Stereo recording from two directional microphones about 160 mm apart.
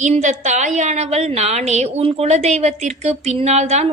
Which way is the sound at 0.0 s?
45° right (ahead or behind).